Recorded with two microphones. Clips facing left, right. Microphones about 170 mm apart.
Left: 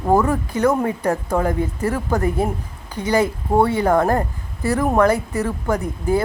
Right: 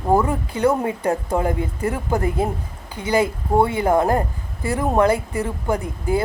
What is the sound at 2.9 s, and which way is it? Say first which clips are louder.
Speech: left 1 dB; 10° right (ahead or behind).